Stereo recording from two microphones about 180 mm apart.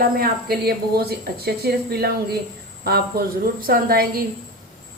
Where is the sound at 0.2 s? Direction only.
60° right (ahead or behind).